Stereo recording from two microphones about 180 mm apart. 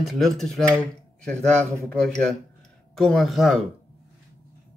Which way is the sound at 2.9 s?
Centre (ahead or behind).